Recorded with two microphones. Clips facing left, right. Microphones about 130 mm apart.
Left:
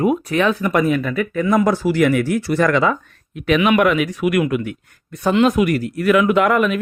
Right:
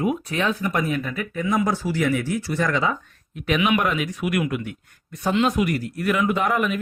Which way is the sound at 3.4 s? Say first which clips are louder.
Left 6 dB; 85° left.